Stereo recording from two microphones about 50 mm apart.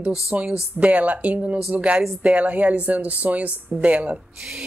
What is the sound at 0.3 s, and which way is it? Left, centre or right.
Speech, right.